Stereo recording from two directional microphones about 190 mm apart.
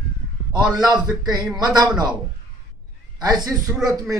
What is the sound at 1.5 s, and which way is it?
Speech, 20° right (ahead or behind).